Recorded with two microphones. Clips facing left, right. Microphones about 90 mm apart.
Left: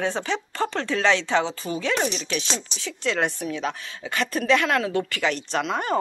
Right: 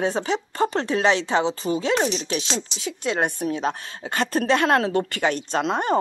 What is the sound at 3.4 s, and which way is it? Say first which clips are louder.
A woman's voice: right 3 dB; 40° right (ahead or behind).